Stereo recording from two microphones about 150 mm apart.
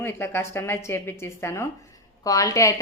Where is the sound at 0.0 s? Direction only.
15° left (ahead or behind).